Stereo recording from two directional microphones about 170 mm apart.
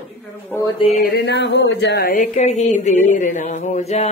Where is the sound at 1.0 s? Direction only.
80° left.